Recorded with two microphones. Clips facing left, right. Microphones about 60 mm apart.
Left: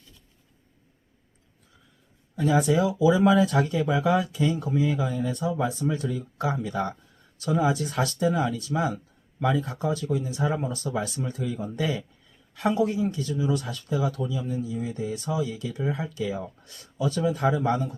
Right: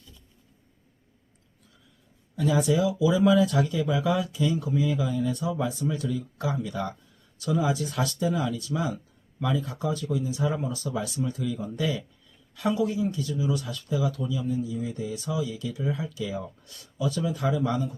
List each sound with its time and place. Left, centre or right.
2.3 s speech: left